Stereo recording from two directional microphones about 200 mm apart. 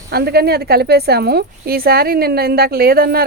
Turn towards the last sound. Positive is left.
turn(degrees=-50)  # may be behind; listen again after turning